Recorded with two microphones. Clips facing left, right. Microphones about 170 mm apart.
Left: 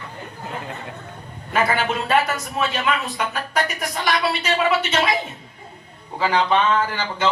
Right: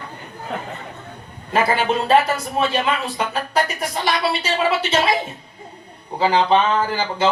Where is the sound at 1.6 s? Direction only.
30° right (ahead or behind).